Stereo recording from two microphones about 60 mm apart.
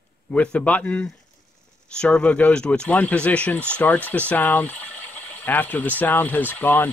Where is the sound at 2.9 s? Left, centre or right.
Left.